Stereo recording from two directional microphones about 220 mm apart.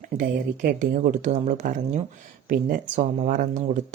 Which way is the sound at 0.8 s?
35° right (ahead or behind).